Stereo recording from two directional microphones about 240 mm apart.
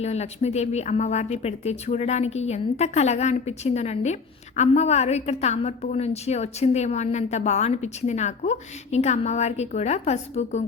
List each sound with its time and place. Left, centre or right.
0.0 s speech: left